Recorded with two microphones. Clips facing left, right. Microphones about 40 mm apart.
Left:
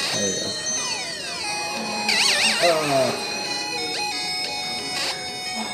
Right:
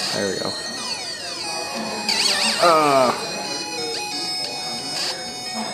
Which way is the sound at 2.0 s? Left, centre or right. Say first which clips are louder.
Left 2 dB; left.